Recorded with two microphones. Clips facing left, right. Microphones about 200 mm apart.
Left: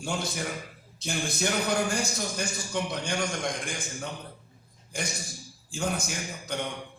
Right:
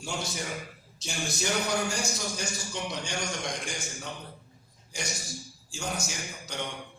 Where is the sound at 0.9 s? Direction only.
55° left (ahead or behind).